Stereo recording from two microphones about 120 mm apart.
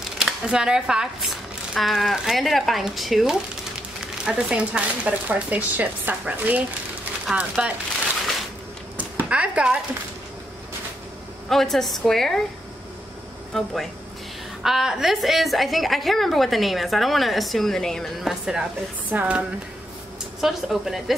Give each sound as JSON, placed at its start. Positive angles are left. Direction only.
{"t": 0.2, "sound": "speech", "side_deg": -5}
{"t": 8.9, "sound": "chop", "side_deg": -10}
{"t": 11.4, "sound": "a woman's voice", "side_deg": 5}
{"t": 13.5, "sound": "a woman's voice", "side_deg": 5}